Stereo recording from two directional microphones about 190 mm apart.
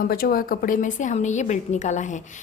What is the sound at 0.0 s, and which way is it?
A woman's voice, 50° left (ahead or behind).